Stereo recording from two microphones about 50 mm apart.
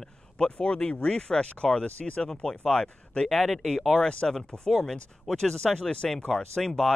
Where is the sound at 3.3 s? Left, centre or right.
Centre.